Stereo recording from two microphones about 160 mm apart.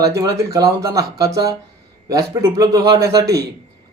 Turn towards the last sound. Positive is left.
turn(degrees=-20)  # may be behind; listen again after turning